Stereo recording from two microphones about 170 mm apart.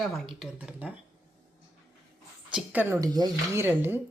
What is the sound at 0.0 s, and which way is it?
Speech, centre (ahead or behind).